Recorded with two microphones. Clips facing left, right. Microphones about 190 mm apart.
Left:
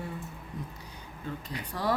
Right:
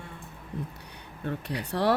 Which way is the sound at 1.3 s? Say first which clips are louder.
Right 6 dB; 70° right (ahead or behind).